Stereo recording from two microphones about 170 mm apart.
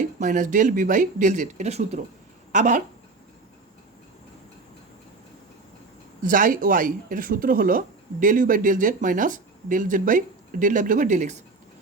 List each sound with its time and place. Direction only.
0.0 s speech: 50° right (ahead or behind)
6.2 s speech: 50° right (ahead or behind)